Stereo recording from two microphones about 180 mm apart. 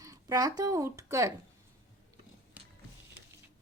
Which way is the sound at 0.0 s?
20° right (ahead or behind).